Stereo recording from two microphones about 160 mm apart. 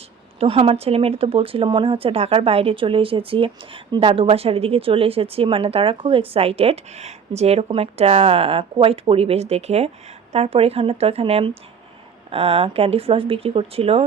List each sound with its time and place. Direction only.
0.3 s speech: 35° right (ahead or behind)